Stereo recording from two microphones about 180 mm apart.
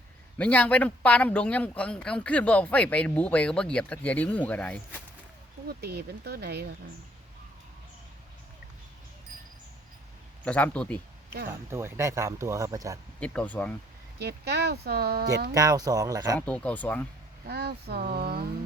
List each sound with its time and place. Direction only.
0.3 s a man's voice: 5° left (ahead or behind)
5.6 s speech: 60° right (ahead or behind)
10.4 s a man's voice: 5° left (ahead or behind)
11.7 s speech: 15° right (ahead or behind)
13.1 s a man's voice: 5° left (ahead or behind)
14.2 s speech: 65° right (ahead or behind)
15.5 s speech: 20° right (ahead or behind)
16.5 s a man's voice: 5° left (ahead or behind)
17.4 s speech: 60° right (ahead or behind)